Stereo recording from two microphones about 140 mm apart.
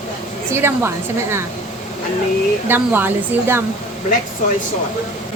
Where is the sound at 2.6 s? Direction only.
15° right (ahead or behind).